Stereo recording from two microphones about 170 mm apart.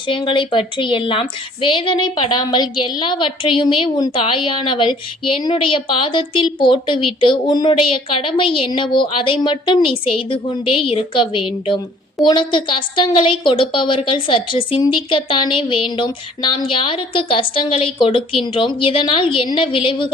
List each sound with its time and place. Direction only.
0.1 s a woman's voice: 30° left (ahead or behind)